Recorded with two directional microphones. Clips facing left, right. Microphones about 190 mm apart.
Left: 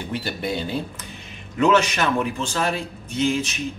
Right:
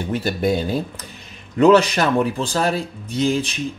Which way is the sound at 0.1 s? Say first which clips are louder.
Right 7 dB; 45° right (ahead or behind).